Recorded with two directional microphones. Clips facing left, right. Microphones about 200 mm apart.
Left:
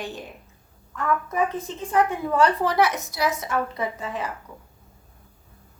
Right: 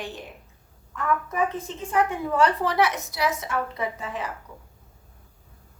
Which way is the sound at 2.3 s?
40° left (ahead or behind).